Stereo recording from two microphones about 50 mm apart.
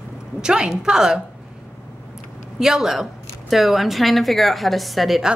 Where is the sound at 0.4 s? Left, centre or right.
Centre.